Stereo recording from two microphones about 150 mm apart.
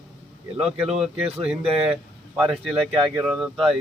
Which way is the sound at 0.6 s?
5° right (ahead or behind).